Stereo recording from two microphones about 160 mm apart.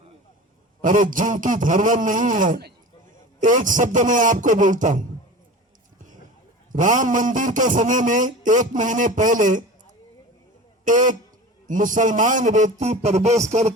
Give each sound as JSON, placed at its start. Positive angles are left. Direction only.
{"t": 0.8, "sound": "a man's voice", "side_deg": -55}
{"t": 6.7, "sound": "a man's voice", "side_deg": -55}
{"t": 10.8, "sound": "a man's voice", "side_deg": -55}